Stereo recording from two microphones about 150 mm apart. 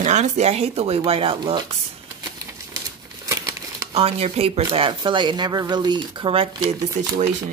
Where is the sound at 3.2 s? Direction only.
20° right (ahead or behind).